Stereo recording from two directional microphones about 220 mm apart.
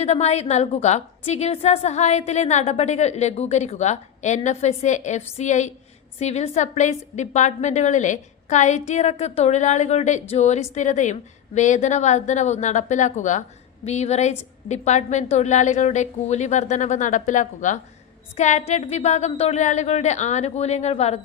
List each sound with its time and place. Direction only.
0.0 s a woman's voice: 30° left (ahead or behind)